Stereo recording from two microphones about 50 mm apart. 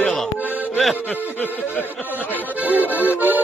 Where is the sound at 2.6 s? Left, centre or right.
Right.